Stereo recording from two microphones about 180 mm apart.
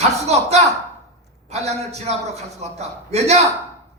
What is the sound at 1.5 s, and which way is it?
Speech, 40° right (ahead or behind).